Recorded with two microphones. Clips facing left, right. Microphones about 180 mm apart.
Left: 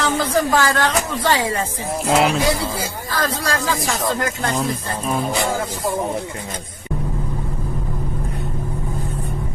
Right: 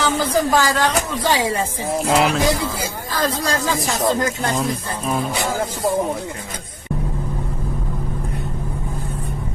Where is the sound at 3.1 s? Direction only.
20° right (ahead or behind).